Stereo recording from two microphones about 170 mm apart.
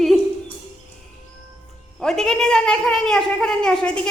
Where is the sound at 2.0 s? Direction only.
5° left (ahead or behind).